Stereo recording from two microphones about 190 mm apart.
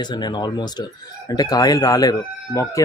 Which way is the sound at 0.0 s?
20° left (ahead or behind).